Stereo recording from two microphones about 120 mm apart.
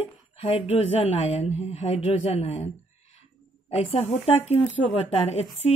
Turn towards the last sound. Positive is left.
turn(degrees=60)  # may be behind; listen again after turning